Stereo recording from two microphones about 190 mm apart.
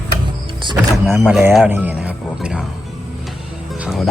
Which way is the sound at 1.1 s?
10° right (ahead or behind).